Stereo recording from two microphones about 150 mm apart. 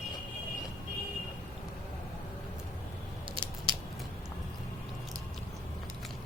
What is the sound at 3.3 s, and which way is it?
Scissors, 35° right (ahead or behind).